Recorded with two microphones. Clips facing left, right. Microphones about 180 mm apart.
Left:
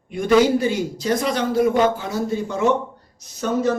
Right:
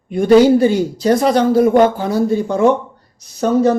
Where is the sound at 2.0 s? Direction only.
35° right (ahead or behind).